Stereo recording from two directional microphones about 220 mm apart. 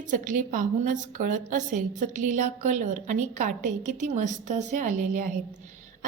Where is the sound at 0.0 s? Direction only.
35° right (ahead or behind).